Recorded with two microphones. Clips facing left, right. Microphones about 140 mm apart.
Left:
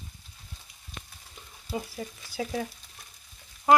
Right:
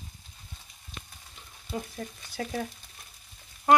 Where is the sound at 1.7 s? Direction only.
5° left (ahead or behind).